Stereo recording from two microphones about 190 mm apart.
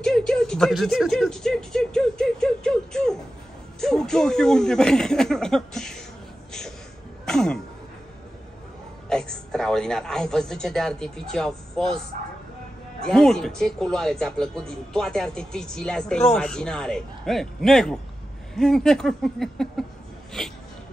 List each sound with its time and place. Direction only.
0.0 s speech: 5° left (ahead or behind)
7.2 s speech: 5° left (ahead or behind)
9.1 s a man's voice: 5° left (ahead or behind)
13.1 s speech: 5° left (ahead or behind)